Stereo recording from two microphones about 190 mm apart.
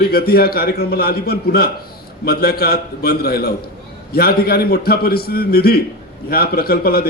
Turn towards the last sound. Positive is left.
turn(degrees=55)  # may be behind; listen again after turning